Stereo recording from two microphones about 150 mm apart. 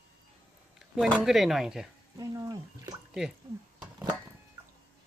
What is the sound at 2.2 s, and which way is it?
Speech, 20° right (ahead or behind).